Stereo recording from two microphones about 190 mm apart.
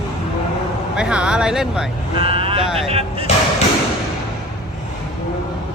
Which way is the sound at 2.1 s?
30° right (ahead or behind).